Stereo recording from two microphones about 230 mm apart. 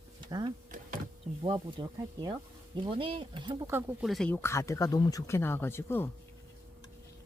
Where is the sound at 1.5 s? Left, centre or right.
Centre.